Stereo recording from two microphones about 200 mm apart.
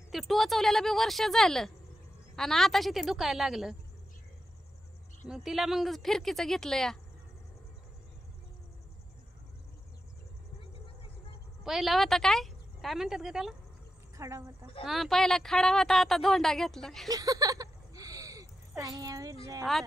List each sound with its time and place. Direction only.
0.1 s speech: centre (ahead or behind)
5.3 s speech: centre (ahead or behind)
11.6 s a woman's voice: centre (ahead or behind)
14.1 s a woman's voice: 15° right (ahead or behind)
14.9 s speech: centre (ahead or behind)
17.1 s a sound: 20° right (ahead or behind)